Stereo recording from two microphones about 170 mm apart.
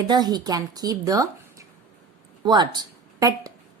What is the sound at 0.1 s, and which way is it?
A woman's voice, 25° right (ahead or behind).